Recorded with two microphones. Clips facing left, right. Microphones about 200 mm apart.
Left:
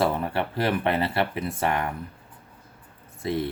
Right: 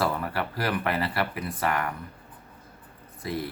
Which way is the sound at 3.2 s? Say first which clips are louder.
Left 5 dB; 25° left (ahead or behind).